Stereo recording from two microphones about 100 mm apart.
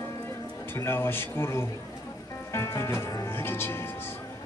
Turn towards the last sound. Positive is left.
turn(degrees=25)  # may be behind; listen again after turning